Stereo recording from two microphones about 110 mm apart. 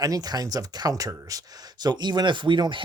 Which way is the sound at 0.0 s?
35° right (ahead or behind).